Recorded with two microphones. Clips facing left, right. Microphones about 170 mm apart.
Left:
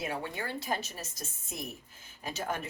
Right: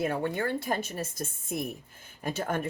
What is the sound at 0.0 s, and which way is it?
Speech, 50° right (ahead or behind).